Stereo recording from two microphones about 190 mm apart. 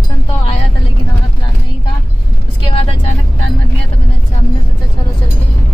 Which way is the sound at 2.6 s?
30° left (ahead or behind).